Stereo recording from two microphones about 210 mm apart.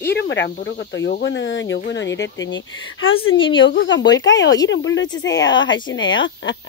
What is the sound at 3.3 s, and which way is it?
Speech, 25° left (ahead or behind).